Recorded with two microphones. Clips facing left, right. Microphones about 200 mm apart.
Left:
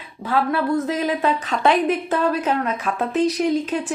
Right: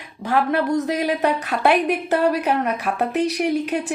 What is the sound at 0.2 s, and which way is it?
A woman's voice, 15° right (ahead or behind).